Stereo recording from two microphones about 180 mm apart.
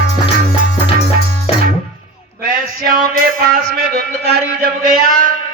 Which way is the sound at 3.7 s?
55° right (ahead or behind).